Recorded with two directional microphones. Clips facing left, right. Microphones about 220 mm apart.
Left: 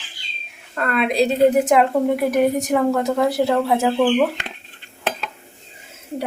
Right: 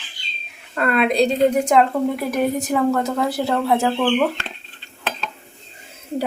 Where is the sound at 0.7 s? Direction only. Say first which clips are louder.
Right 1 dB; centre (ahead or behind).